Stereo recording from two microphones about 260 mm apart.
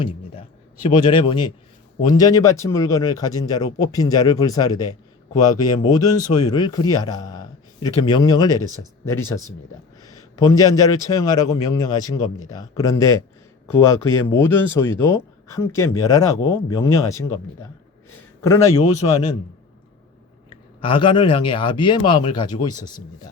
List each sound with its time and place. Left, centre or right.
0.0 s a man's voice: left
18.4 s speech: centre
18.8 s speech: left
20.5 s speech: centre